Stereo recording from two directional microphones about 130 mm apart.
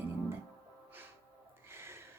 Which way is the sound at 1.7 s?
20° right (ahead or behind).